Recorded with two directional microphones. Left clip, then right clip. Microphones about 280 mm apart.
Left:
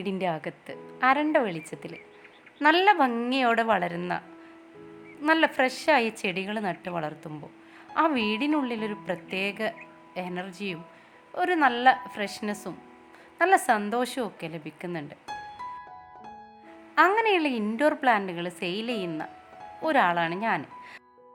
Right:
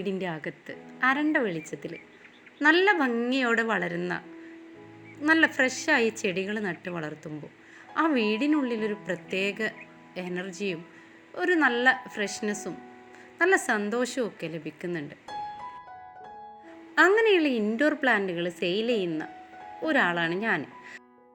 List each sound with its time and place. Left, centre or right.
0.0 s a woman's voice: centre
5.2 s a woman's voice: centre
16.9 s a woman's voice: centre